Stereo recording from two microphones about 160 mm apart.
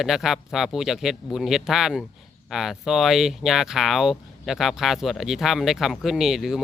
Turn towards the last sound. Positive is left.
turn(degrees=0)  # may be behind; listen again after turning